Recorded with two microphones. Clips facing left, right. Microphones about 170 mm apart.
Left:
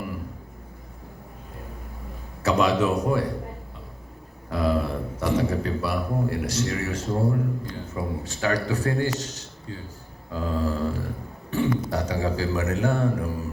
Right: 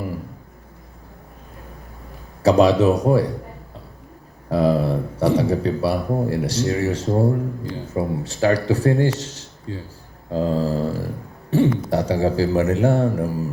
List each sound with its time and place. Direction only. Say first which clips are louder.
2.4 s a man's voice: right 7 dB; 35° right (ahead or behind)
4.4 s a man's voice: right 6 dB; 35° right (ahead or behind)
9.2 s a sound: right 4 dB; 30° right (ahead or behind)
10.3 s a man's voice: right 6 dB; 30° right (ahead or behind)